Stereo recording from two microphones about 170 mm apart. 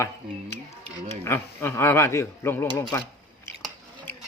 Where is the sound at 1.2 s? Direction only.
15° left (ahead or behind).